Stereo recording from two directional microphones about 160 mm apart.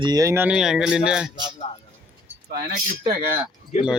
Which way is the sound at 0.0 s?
25° right (ahead or behind).